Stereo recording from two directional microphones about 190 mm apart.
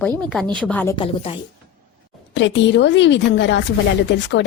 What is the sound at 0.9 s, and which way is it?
Speech, 25° left (ahead or behind).